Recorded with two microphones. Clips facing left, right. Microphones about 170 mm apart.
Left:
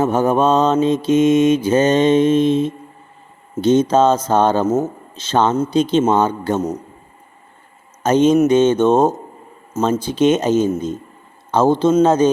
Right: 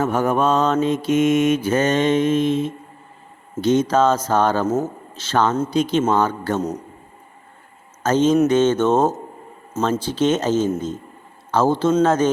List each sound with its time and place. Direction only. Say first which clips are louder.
0.0 s mantra: left 4 dB; 20° left (ahead or behind)
8.0 s speech: left 3 dB; 15° left (ahead or behind)
11.5 s mantra: left 3 dB; 20° left (ahead or behind)
12.0 s speech: left 4 dB; 15° left (ahead or behind)